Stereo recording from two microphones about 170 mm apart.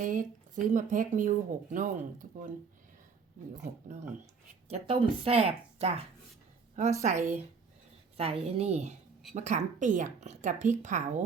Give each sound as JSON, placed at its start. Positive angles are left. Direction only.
{"t": 0.0, "sound": "speech", "side_deg": -50}
{"t": 4.7, "sound": "speech", "side_deg": -35}
{"t": 7.0, "sound": "speech", "side_deg": -45}